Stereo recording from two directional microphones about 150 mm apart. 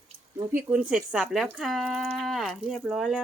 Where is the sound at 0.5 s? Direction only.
5° right (ahead or behind).